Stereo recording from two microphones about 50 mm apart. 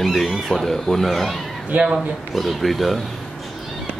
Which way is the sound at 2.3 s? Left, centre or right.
Centre.